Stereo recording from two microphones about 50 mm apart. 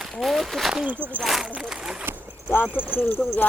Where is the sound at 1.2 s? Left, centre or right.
Centre.